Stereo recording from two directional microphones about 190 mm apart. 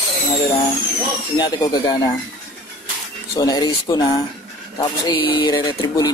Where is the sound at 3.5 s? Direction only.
20° left (ahead or behind).